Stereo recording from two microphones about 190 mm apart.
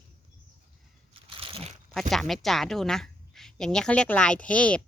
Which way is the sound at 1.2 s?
30° right (ahead or behind).